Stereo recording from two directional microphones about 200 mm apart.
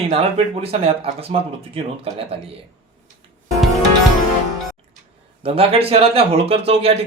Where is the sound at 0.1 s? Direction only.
30° right (ahead or behind).